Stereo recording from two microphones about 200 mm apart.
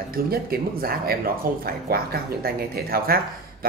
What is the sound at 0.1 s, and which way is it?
Speech, 50° right (ahead or behind).